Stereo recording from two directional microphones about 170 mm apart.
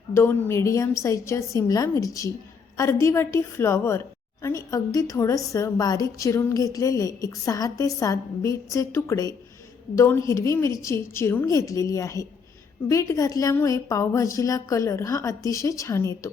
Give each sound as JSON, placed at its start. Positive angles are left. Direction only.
{"t": 0.1, "sound": "a woman's voice", "side_deg": 15}